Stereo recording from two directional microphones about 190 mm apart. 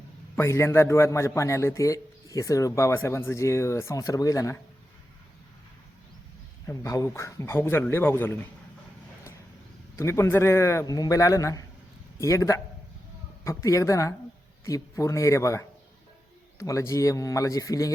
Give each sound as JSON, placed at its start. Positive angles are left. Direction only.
{"t": 0.3, "sound": "a man's voice", "side_deg": 15}
{"t": 6.7, "sound": "a man's voice", "side_deg": 15}
{"t": 9.9, "sound": "a man's voice", "side_deg": 15}